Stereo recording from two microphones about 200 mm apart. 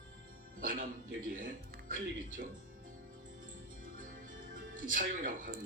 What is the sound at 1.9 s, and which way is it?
Speech, 40° right (ahead or behind).